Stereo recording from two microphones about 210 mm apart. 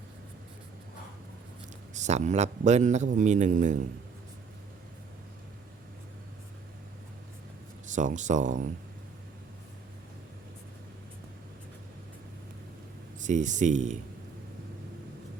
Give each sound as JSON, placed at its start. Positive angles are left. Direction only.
{"t": 1.9, "sound": "a man's voice", "side_deg": -35}
{"t": 7.9, "sound": "a man's voice", "side_deg": -35}
{"t": 13.1, "sound": "a man's voice", "side_deg": -35}